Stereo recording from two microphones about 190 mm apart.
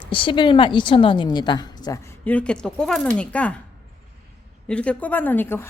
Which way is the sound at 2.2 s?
5° left (ahead or behind).